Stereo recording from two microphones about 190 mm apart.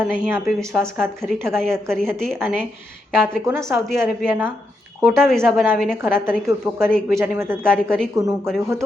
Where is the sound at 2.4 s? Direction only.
10° right (ahead or behind).